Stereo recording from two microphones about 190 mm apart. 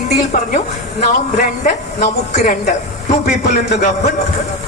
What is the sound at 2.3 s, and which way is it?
Speech, 45° left (ahead or behind).